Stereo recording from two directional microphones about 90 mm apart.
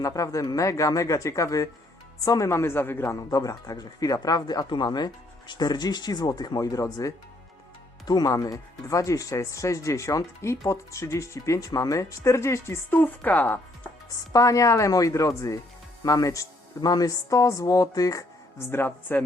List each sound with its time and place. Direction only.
0.0 s a woman's voice: 40° left (ahead or behind)
3.3 s speech: 45° left (ahead or behind); by 13.6 s 20° left (ahead or behind)
14.3 s speech: 35° left (ahead or behind)
18.7 s a woman's voice: 20° left (ahead or behind)